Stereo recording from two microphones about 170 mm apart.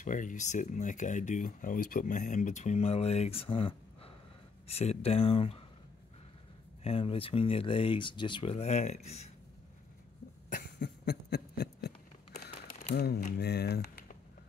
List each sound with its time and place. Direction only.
0.0 s speech: 50° left (ahead or behind)
6.8 s speech: 35° left (ahead or behind)
10.5 s a sound: 65° left (ahead or behind)
13.4 s speech: 70° left (ahead or behind)